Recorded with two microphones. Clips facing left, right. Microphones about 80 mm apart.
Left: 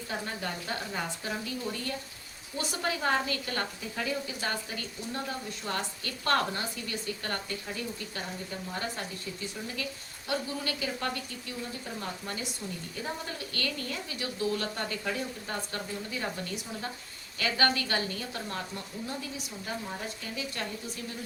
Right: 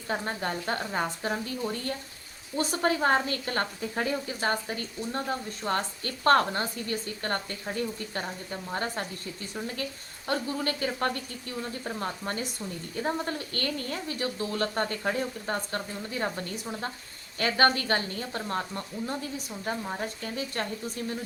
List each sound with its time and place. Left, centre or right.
0.1 s a woman's voice: right
10.2 s a woman's voice: right
17.3 s a woman's voice: right